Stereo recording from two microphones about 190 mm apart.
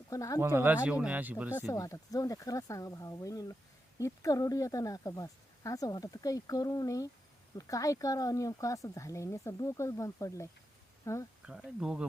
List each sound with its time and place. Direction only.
0.1 s speech: 15° left (ahead or behind)
0.3 s speech: 10° right (ahead or behind)
1.5 s speech: 15° left (ahead or behind)
11.4 s speech: 5° right (ahead or behind)